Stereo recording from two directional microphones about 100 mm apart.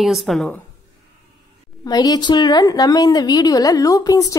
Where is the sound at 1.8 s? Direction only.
40° left (ahead or behind).